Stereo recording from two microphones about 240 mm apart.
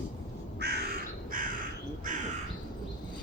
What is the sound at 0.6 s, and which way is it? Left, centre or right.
Crow, right.